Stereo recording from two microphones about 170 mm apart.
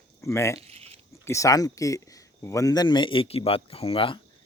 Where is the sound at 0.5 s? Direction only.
35° right (ahead or behind).